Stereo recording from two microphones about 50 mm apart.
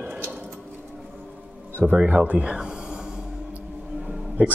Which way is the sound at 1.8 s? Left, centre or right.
Centre.